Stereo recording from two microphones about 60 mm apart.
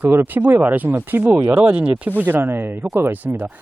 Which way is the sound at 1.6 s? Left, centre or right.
Right.